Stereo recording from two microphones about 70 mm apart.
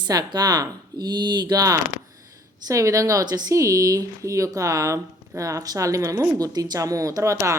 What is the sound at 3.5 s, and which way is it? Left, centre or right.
A woman's voice, right.